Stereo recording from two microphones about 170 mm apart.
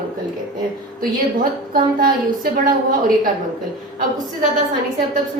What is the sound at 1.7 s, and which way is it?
Speech, 55° right (ahead or behind).